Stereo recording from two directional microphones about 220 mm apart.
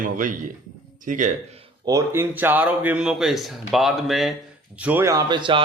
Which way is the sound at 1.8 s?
15° right (ahead or behind).